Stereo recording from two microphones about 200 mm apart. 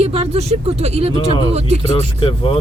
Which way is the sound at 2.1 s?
25° left (ahead or behind).